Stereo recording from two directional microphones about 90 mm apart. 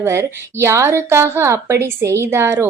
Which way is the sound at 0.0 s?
30° right (ahead or behind).